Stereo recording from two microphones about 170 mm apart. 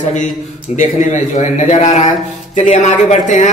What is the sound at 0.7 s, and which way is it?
A man's voice, 45° left (ahead or behind).